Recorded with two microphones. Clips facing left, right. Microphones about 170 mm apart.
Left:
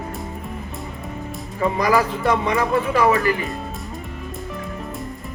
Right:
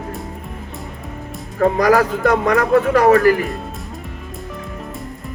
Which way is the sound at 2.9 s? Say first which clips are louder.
Right 6 dB; 50° right (ahead or behind).